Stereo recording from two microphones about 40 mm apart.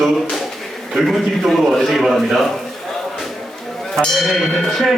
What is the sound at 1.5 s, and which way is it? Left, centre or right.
Speech, centre.